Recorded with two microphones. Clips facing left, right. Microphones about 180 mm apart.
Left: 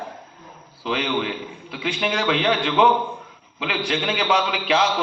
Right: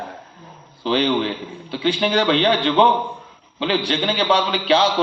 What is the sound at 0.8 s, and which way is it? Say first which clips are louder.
A man's voice: right 5 dB; 30° right (ahead or behind).